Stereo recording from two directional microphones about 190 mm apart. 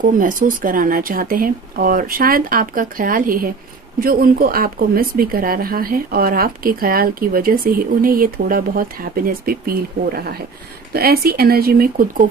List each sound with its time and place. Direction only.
0.0 s speech: 45° right (ahead or behind)